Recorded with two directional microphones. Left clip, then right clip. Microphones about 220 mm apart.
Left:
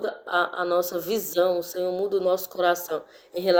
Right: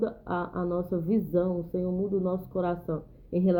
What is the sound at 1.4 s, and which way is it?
Speech, 25° left (ahead or behind).